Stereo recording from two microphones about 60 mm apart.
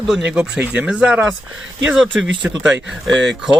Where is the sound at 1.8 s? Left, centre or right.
Centre.